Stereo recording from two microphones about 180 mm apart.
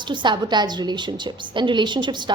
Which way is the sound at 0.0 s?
25° right (ahead or behind).